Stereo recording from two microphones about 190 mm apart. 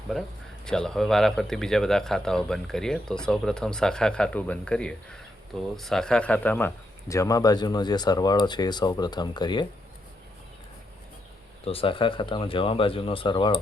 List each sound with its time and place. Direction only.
0.1 s speech: centre (ahead or behind); by 9.6 s 25° left (ahead or behind)
11.6 s speech: 30° left (ahead or behind)